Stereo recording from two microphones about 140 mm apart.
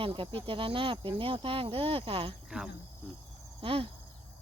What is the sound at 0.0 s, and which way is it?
Cricket, 40° right (ahead or behind).